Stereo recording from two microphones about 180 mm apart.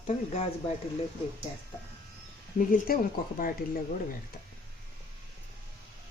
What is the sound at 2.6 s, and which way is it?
Speech, 50° left (ahead or behind).